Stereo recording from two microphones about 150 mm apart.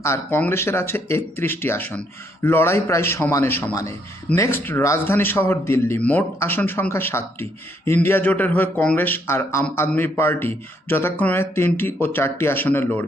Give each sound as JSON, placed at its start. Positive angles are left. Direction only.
{"t": 0.0, "sound": "a man's voice", "side_deg": 15}